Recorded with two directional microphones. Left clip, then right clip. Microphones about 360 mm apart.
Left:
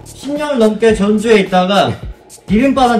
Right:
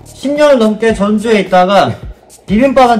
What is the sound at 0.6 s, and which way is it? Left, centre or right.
Speech, centre.